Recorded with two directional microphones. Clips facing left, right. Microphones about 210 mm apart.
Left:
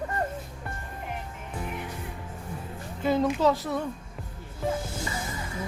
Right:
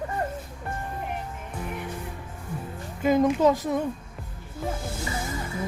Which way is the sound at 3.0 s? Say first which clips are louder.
Right 3 dB; 15° right (ahead or behind).